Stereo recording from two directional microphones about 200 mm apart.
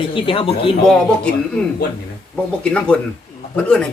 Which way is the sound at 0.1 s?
25° left (ahead or behind).